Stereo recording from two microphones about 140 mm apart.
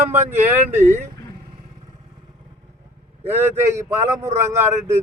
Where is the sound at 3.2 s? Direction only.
15° right (ahead or behind).